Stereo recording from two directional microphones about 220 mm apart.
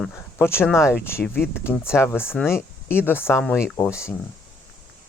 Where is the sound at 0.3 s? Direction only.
10° left (ahead or behind).